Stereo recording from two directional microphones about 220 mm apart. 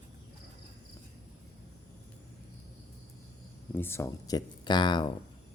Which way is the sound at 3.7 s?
10° left (ahead or behind).